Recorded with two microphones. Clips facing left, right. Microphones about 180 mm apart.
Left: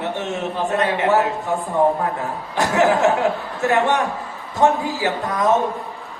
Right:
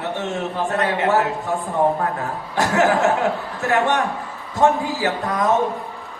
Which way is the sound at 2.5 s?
20° left (ahead or behind).